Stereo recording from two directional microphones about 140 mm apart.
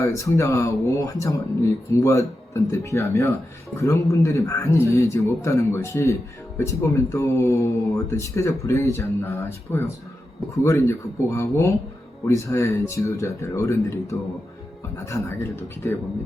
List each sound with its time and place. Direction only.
0.1 s a man's voice: 20° left (ahead or behind)